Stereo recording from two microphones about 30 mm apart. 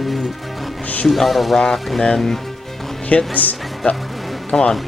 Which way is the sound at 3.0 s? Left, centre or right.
Left.